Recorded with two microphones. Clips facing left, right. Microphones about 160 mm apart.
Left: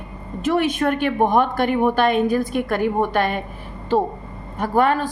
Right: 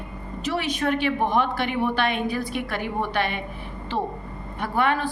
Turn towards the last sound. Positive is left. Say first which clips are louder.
# left 5 dB
turn(degrees=40)  # may be behind; listen again after turning